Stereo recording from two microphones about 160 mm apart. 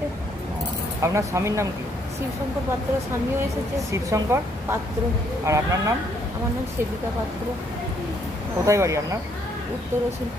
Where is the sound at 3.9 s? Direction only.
20° right (ahead or behind).